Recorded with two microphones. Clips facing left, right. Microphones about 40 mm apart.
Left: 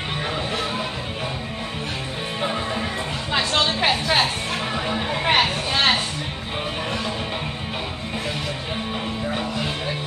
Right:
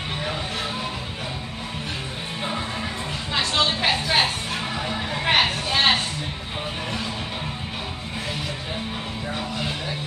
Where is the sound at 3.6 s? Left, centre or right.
Centre.